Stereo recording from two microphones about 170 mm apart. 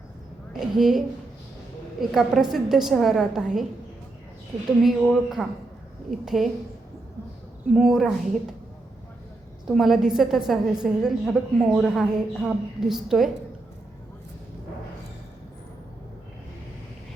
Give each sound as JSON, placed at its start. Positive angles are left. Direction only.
{"t": 0.6, "sound": "a woman's voice", "side_deg": -5}
{"t": 4.8, "sound": "a woman's voice", "side_deg": -5}
{"t": 7.7, "sound": "a woman's voice", "side_deg": 0}
{"t": 9.6, "sound": "a woman's voice", "side_deg": 0}